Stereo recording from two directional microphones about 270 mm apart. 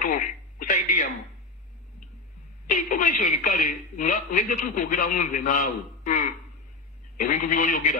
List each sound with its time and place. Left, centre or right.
0.0 s telephone: left
2.7 s a woman's voice: left